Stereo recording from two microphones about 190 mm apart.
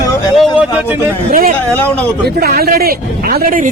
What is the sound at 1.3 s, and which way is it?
Speech, 50° right (ahead or behind).